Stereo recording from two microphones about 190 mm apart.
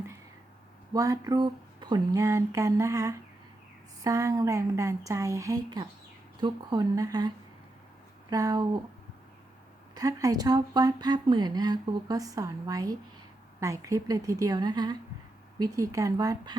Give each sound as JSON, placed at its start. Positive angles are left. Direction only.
{"t": 0.9, "sound": "speech", "side_deg": -15}
{"t": 9.9, "sound": "speech", "side_deg": -20}